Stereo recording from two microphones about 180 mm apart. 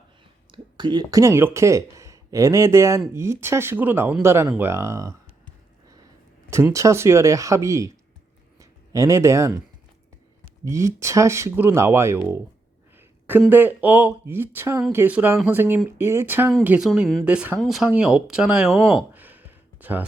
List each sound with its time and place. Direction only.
0.5 s speech: 25° right (ahead or behind)
6.5 s speech: 15° right (ahead or behind)
10.7 s speech: 15° right (ahead or behind)
13.0 s a sound: 10° right (ahead or behind)
13.5 s speech: 10° right (ahead or behind)